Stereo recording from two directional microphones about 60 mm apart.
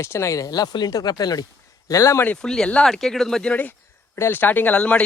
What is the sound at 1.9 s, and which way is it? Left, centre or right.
Speech, left.